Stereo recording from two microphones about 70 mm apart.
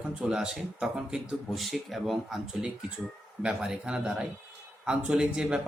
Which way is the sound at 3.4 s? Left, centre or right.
Centre.